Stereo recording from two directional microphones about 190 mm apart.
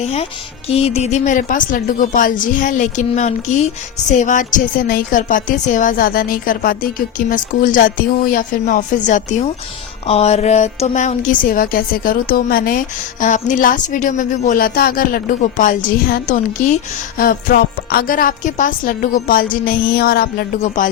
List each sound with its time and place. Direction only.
0.0 s a woman's voice: 35° left (ahead or behind)